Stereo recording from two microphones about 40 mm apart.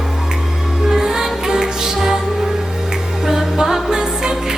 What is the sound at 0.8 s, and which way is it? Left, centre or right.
Music, centre.